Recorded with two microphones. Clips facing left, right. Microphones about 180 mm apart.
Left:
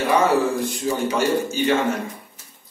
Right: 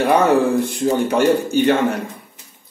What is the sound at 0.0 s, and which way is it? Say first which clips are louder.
A man's voice: right 4 dB; 55° right (ahead or behind).